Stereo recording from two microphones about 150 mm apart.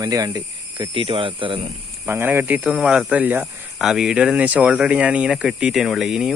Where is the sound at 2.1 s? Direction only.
15° right (ahead or behind).